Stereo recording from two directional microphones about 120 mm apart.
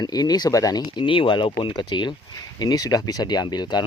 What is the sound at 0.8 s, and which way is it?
Speech, 45° left (ahead or behind).